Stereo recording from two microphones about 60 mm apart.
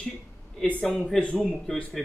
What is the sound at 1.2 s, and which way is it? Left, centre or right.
Speech, centre.